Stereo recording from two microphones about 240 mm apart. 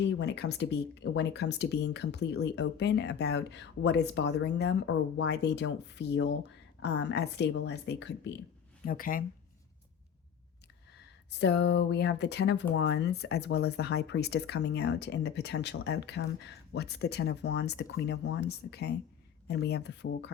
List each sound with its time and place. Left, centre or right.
0.2 s speech: left
8.8 s speech: left
11.3 s speech: left